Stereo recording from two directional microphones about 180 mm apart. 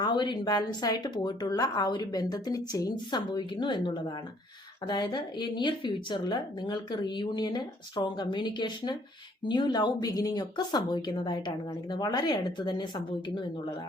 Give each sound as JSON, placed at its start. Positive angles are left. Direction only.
{"t": 0.0, "sound": "a woman's voice", "side_deg": 25}